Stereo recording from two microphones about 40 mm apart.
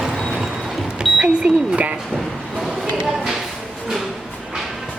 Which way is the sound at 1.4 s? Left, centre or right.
Right.